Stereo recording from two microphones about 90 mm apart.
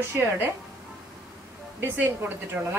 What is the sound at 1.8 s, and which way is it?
A woman's voice, 25° right (ahead or behind).